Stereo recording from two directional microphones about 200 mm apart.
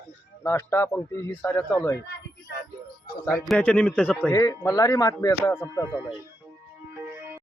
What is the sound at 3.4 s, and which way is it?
Speech, 5° left (ahead or behind).